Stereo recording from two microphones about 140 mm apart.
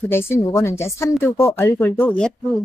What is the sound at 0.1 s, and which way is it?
Speech, 20° left (ahead or behind).